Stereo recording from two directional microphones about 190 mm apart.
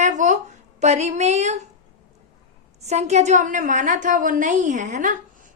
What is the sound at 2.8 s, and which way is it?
A woman's voice, 35° right (ahead or behind).